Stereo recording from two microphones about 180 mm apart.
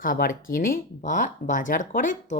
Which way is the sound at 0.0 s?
50° left (ahead or behind).